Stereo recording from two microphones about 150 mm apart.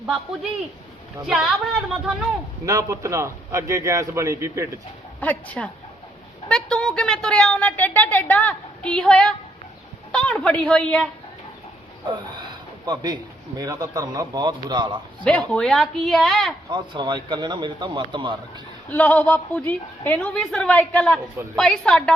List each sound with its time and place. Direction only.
1.2 s speech: centre (ahead or behind)
2.6 s a man's voice: 20° right (ahead or behind)
5.2 s a woman's voice: 10° left (ahead or behind)
12.8 s a man's voice: 25° right (ahead or behind)
15.2 s speech: 5° left (ahead or behind)
16.6 s a man's voice: 30° right (ahead or behind)
18.9 s a woman's voice: 10° left (ahead or behind)